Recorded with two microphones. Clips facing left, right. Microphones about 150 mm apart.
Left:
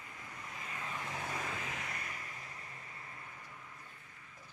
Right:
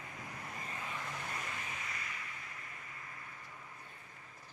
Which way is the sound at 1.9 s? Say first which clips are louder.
Left 1 dB; 50° left (ahead or behind).